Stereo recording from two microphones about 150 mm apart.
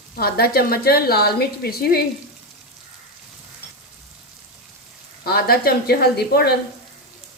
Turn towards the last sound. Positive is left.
turn(degrees=90)